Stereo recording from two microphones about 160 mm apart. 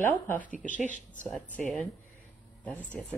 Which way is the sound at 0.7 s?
50° left (ahead or behind).